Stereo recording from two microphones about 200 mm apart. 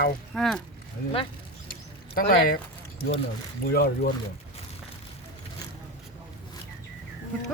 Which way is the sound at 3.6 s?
50° left (ahead or behind).